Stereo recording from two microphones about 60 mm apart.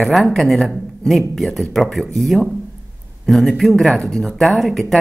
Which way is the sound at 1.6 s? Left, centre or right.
Centre.